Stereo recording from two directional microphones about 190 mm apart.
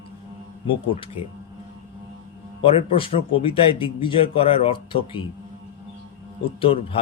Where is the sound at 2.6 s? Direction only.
30° left (ahead or behind).